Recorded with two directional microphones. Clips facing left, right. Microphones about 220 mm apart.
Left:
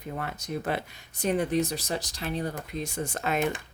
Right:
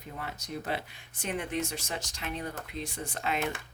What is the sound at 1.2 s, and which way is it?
Speech, 40° left (ahead or behind).